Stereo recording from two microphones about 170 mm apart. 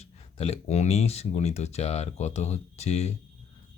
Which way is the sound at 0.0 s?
35° left (ahead or behind).